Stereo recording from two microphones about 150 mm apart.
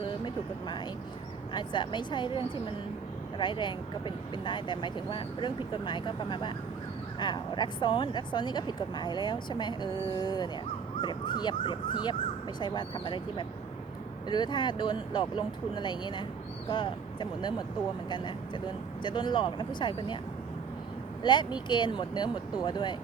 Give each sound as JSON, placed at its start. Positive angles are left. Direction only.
{"t": 1.5, "sound": "speech", "side_deg": 30}
{"t": 3.3, "sound": "speech", "side_deg": 30}
{"t": 21.2, "sound": "speech", "side_deg": 30}